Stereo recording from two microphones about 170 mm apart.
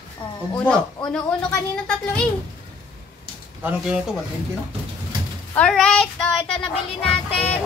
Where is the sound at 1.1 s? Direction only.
5° left (ahead or behind).